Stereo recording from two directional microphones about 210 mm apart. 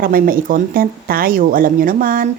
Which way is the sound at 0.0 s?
45° right (ahead or behind).